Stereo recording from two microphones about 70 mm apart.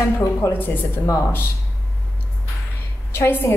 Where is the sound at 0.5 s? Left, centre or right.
Left.